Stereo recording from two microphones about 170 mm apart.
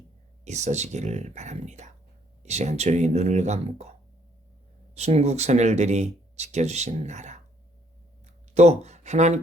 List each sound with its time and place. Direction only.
0.4 s speech: 40° right (ahead or behind)
4.9 s speech: 40° right (ahead or behind)
8.5 s speech: 40° right (ahead or behind)